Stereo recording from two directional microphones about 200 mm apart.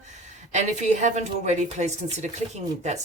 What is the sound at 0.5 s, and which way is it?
Speech, 35° right (ahead or behind).